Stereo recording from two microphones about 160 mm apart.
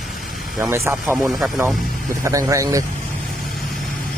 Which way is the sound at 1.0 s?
Centre (ahead or behind).